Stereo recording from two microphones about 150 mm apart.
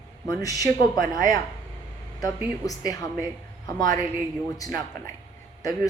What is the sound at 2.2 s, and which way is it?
Speech, 20° left (ahead or behind).